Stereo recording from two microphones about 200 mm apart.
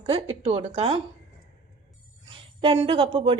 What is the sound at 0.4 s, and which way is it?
Speech, 30° right (ahead or behind).